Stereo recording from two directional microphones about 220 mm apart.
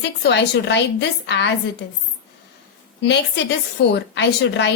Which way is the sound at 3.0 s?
50° left (ahead or behind).